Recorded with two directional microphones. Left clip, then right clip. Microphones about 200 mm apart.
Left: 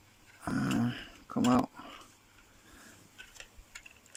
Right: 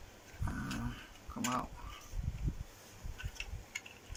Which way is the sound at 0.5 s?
50° left (ahead or behind).